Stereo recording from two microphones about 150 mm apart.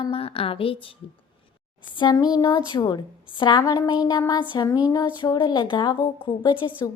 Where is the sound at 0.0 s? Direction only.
40° left (ahead or behind).